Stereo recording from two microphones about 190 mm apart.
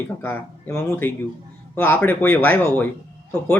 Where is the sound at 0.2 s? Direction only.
10° left (ahead or behind).